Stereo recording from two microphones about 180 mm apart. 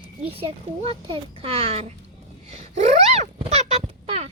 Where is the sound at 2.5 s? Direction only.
40° right (ahead or behind).